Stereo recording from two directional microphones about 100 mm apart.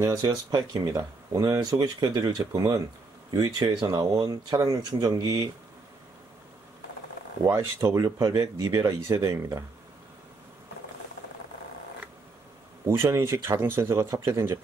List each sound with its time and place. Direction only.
0.0 s speech: 40° right (ahead or behind)
7.9 s speech: 35° right (ahead or behind)
12.8 s speech: 30° right (ahead or behind)